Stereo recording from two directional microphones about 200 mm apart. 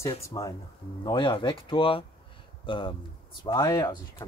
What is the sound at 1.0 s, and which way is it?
Speech, 25° left (ahead or behind).